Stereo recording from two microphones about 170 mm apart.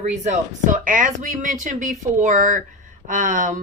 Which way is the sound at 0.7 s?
50° right (ahead or behind).